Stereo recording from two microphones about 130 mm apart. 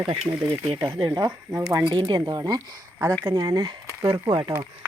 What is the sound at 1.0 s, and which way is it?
Speech, 35° right (ahead or behind).